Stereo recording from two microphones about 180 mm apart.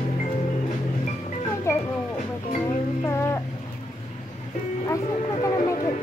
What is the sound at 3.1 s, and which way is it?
Music, 15° left (ahead or behind).